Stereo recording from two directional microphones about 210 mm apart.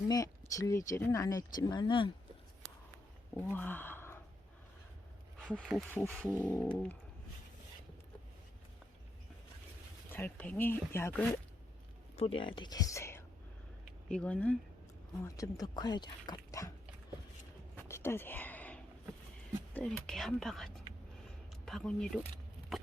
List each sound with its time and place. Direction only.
0.1 s speech: 15° left (ahead or behind)
3.3 s speech: 10° left (ahead or behind)
5.5 s speech: centre (ahead or behind)
10.1 s speech: 10° left (ahead or behind)
12.1 s speech: 30° left (ahead or behind)
17.7 s a sound: 10° left (ahead or behind)
19.7 s speech: 5° left (ahead or behind)
21.2 s a sound: 5° left (ahead or behind)